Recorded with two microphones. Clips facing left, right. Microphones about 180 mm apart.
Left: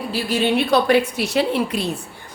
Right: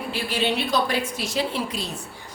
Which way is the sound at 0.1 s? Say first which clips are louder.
Left 6 dB; 45° left (ahead or behind).